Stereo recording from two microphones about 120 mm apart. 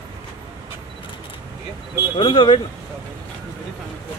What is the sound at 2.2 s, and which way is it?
Speech, 45° left (ahead or behind).